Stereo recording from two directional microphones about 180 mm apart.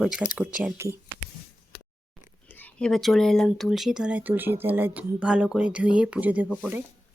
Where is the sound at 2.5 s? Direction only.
5° left (ahead or behind).